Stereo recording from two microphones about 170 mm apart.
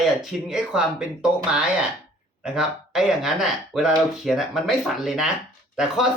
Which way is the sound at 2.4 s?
5° right (ahead or behind).